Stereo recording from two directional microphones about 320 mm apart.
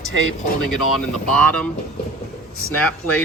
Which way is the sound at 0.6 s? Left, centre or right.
Centre.